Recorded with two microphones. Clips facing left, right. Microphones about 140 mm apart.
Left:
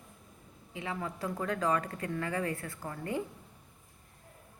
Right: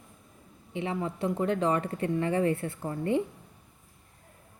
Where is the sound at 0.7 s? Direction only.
25° right (ahead or behind).